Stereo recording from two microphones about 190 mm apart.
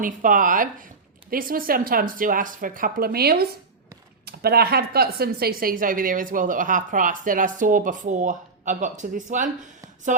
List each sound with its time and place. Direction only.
0.0 s speech: 45° right (ahead or behind)